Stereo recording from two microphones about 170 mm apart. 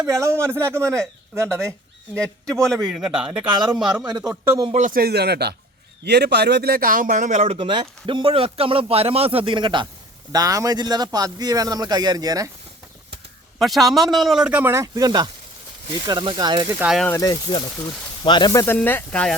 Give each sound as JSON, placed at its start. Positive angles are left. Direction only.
{"t": 0.0, "sound": "a man's voice", "side_deg": -20}
{"t": 2.2, "sound": "a man's voice", "side_deg": 5}
{"t": 4.1, "sound": "a man's voice", "side_deg": -20}
{"t": 4.7, "sound": "a man's voice", "side_deg": -50}
{"t": 13.6, "sound": "a man's voice", "side_deg": 0}
{"t": 16.7, "sound": "a man's voice", "side_deg": -5}
{"t": 17.1, "sound": "speech", "side_deg": 15}
{"t": 18.6, "sound": "speech", "side_deg": 10}